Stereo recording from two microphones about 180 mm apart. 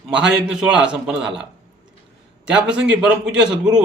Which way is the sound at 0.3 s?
5° right (ahead or behind).